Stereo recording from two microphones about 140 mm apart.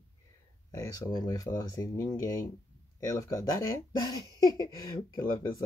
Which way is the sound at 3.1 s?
20° left (ahead or behind).